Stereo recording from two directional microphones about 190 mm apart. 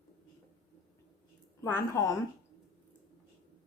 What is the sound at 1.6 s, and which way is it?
Speech, 15° left (ahead or behind).